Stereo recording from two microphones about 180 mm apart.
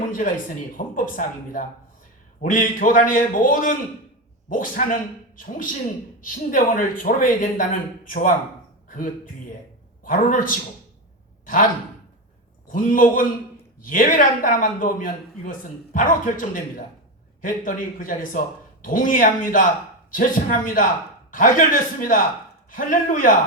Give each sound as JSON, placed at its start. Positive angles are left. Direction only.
{"t": 0.1, "sound": "a man's voice", "side_deg": 50}